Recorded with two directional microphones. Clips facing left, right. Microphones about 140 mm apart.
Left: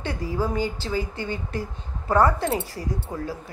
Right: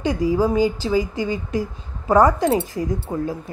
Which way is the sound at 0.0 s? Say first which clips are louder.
Right 8 dB; 15° right (ahead or behind).